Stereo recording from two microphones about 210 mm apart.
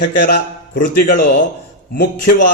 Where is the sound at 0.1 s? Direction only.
45° left (ahead or behind).